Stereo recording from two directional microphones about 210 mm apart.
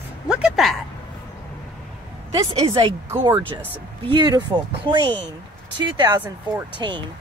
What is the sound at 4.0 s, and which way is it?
Speech, 20° right (ahead or behind).